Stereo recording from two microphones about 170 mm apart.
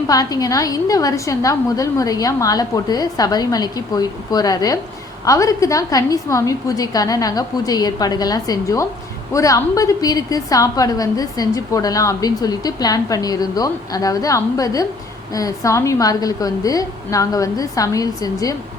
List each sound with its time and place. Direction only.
0.1 s a woman's voice: 20° left (ahead or behind)